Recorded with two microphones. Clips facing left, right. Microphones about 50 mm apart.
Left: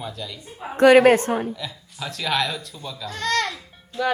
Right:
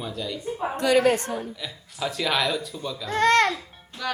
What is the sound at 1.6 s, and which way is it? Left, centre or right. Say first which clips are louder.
A woman's voice: right 2 dB; centre.